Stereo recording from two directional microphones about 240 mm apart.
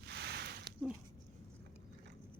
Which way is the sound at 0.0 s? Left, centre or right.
Right.